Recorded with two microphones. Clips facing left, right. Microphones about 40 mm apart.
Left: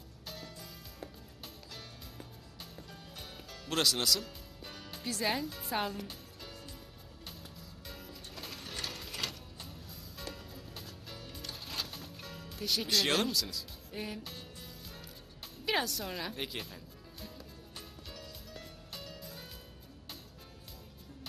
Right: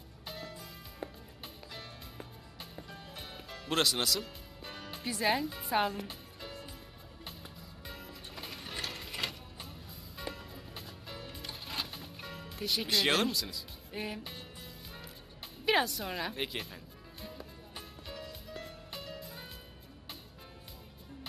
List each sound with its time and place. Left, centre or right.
0.3 s music: centre
2.7 s music: centre
5.0 s speech: centre
7.9 s music: centre
13.1 s a woman's voice: centre
15.6 s a woman's voice: centre
17.2 s music: centre